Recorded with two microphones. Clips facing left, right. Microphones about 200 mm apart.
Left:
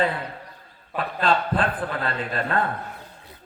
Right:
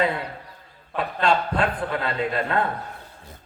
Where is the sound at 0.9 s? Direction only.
Centre (ahead or behind).